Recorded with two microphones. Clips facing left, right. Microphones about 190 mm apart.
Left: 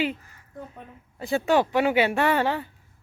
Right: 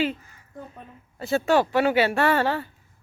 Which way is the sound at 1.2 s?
15° left (ahead or behind).